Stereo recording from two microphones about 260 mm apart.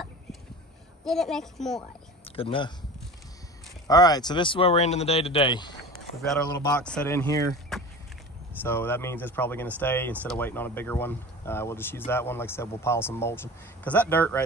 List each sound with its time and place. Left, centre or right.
1.0 s a woman's voice: centre
2.2 s speech: left
3.8 s speech: centre
6.7 s speech: centre
7.7 s vehicle: centre
8.6 s speech: centre